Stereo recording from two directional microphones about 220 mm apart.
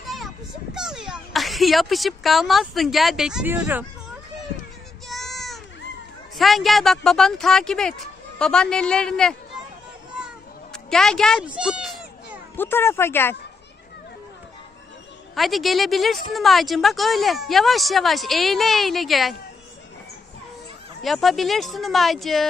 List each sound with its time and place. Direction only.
0.7 s speech: centre (ahead or behind)
5.0 s child singing: centre (ahead or behind)
6.3 s a woman's voice: centre (ahead or behind)
10.1 s a sound: centre (ahead or behind)
12.6 s speech: 10° left (ahead or behind)
15.3 s a woman's voice: centre (ahead or behind)
21.0 s a woman's voice: centre (ahead or behind)